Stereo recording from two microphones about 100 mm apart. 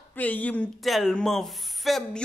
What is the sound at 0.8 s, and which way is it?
Speech, centre (ahead or behind).